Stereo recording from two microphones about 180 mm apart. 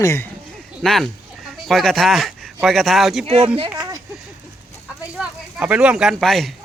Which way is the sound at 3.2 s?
35° right (ahead or behind).